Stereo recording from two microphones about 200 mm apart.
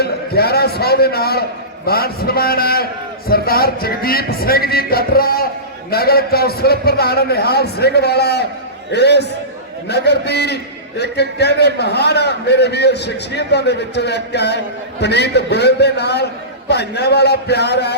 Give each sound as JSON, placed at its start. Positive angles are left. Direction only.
{"t": 0.0, "sound": "a man's voice", "side_deg": 50}